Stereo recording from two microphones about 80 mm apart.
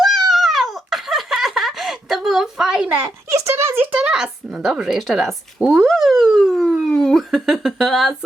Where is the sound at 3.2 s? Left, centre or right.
Right.